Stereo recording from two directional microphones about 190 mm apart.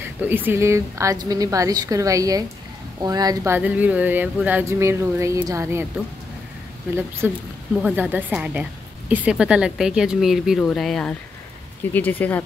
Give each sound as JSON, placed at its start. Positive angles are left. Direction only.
{"t": 0.0, "sound": "speech", "side_deg": -10}
{"t": 7.0, "sound": "speech", "side_deg": -10}